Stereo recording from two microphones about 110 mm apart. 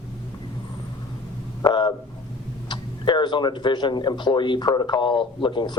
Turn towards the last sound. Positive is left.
turn(degrees=45)  # may be behind; listen again after turning